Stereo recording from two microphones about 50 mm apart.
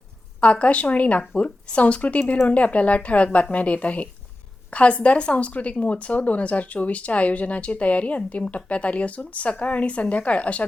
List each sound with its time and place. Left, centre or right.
0.4 s speech: left